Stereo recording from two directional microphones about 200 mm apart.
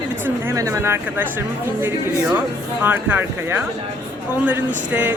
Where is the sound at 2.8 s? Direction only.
10° right (ahead or behind).